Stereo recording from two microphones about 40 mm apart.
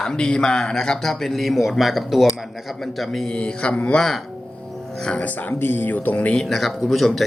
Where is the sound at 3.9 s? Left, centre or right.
Centre.